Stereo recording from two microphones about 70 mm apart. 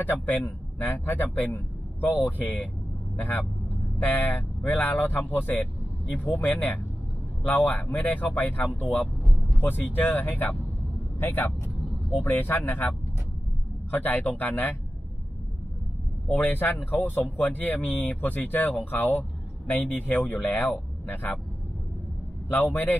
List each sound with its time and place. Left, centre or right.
0.0 s speech: left
4.6 s speech: left
9.0 s vehicle: centre
9.6 s speech: left
16.3 s speech: left
22.5 s speech: left